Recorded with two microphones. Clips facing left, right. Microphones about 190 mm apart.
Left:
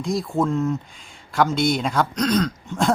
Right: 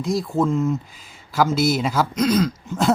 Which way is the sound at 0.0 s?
Centre (ahead or behind).